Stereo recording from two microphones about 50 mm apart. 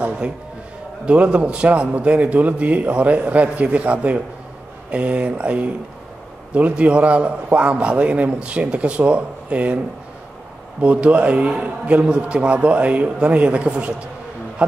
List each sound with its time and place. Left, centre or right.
1.0 s a man's voice: right
10.8 s a man's voice: right